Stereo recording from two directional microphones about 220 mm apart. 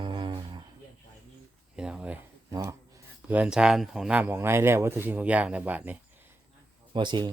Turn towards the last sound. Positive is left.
turn(degrees=-20)  # may be behind; listen again after turning